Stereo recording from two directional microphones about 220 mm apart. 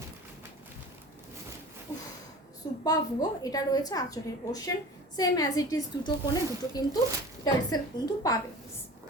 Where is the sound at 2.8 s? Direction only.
15° left (ahead or behind).